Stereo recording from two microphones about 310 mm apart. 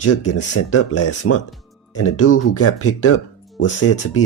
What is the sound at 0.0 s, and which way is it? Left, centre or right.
Speech, left.